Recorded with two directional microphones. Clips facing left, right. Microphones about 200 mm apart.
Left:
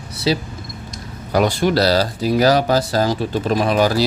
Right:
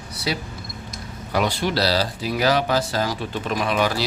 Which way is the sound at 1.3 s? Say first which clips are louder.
Left 6 dB; 45° left (ahead or behind).